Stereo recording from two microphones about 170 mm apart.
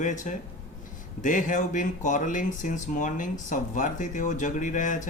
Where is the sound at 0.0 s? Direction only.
45° left (ahead or behind).